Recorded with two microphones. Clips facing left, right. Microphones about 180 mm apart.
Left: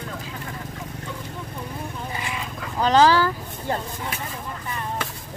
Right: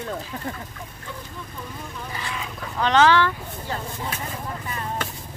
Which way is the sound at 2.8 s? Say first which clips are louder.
Left 1 dB; 35° left (ahead or behind).